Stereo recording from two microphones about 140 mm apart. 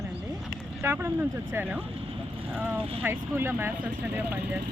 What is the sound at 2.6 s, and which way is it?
Speech, 15° right (ahead or behind).